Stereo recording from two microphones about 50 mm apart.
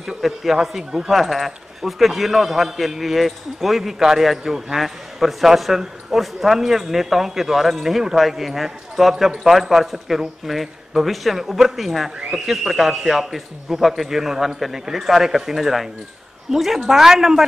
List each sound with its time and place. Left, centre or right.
0.2 s a man's voice: centre